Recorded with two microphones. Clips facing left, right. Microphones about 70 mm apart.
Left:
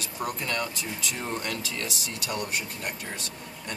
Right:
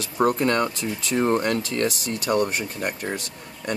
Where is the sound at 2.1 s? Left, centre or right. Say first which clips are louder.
Right 8 dB; right.